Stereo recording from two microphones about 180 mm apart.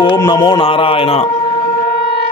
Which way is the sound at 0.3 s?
25° left (ahead or behind).